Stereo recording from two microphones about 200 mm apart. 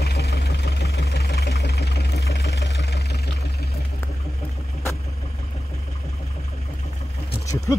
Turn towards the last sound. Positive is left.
turn(degrees=15)  # may be behind; listen again after turning